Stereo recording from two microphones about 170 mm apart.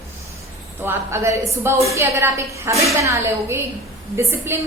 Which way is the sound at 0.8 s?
15° right (ahead or behind).